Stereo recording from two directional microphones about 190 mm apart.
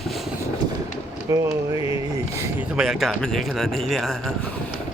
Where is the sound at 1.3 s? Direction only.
15° right (ahead or behind).